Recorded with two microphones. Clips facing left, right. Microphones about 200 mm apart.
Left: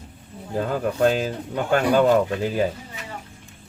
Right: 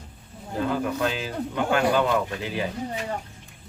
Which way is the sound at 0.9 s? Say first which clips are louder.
Left 6 dB; 45° left (ahead or behind).